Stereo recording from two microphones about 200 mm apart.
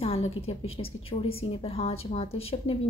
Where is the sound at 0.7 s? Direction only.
30° left (ahead or behind).